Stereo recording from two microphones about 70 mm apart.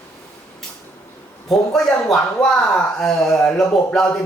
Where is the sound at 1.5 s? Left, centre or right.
Centre.